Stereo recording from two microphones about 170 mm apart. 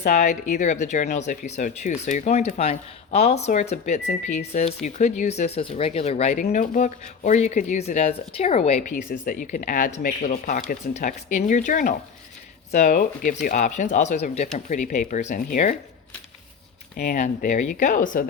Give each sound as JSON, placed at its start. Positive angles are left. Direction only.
{"t": 0.0, "sound": "speech", "side_deg": 45}
{"t": 9.2, "sound": "speech", "side_deg": 55}
{"t": 17.0, "sound": "speech", "side_deg": 45}